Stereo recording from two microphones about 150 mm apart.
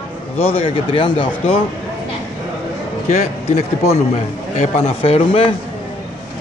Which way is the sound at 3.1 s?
45° left (ahead or behind).